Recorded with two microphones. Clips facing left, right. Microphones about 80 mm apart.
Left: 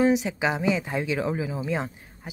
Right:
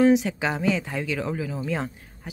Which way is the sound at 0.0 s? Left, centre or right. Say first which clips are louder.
Right 2 dB; centre.